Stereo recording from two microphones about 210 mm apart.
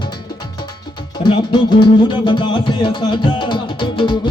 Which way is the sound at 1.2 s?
20° left (ahead or behind).